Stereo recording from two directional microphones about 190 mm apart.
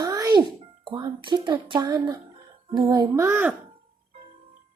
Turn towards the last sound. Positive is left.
turn(degrees=-10)  # may be behind; listen again after turning